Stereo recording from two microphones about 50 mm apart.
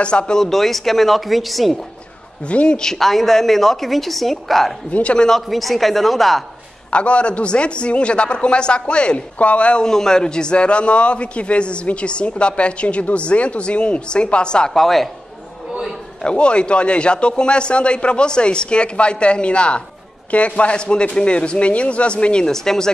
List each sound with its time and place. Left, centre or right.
0.0 s a man's voice: left
0.4 s a woman's voice: centre
2.4 s a man's voice: left
2.8 s a woman's voice: centre
4.9 s a man's voice: left
5.5 s a woman's voice: centre
6.9 s a man's voice: left
9.8 s a man's voice: centre
14.7 s a woman's voice: centre
16.2 s a man's voice: centre